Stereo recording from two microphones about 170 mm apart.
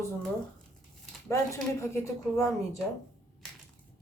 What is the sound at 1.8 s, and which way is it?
Speech, 15° left (ahead or behind).